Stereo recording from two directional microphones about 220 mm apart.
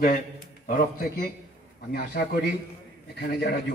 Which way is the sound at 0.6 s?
40° left (ahead or behind).